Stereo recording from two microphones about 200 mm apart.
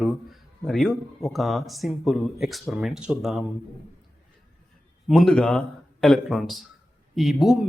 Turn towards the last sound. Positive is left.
turn(degrees=0)  # may be behind; listen again after turning